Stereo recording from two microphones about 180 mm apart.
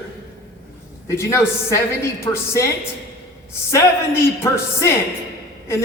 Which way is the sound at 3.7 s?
15° left (ahead or behind).